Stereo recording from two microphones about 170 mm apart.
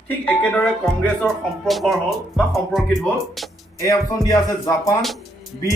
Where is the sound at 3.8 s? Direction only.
20° left (ahead or behind).